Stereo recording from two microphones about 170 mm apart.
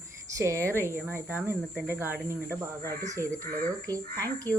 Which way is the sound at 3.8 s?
20° right (ahead or behind).